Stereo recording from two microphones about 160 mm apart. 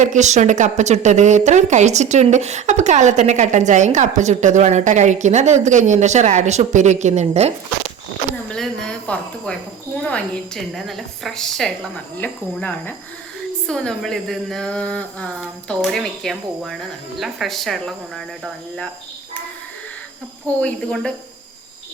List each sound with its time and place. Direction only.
0.0 s a woman's voice: 50° right (ahead or behind)
8.4 s speech: 5° left (ahead or behind)
20.6 s speech: 5° left (ahead or behind)